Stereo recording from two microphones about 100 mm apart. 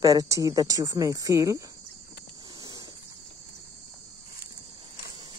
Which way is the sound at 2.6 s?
40° right (ahead or behind).